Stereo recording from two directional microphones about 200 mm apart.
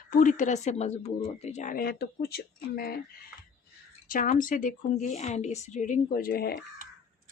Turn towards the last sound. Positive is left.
turn(degrees=50)  # may be behind; listen again after turning